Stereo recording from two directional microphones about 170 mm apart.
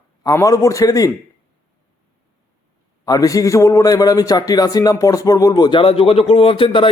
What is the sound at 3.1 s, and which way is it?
A man's voice, 20° left (ahead or behind).